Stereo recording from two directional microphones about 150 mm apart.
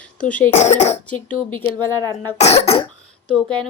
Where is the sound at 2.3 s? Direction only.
45° left (ahead or behind).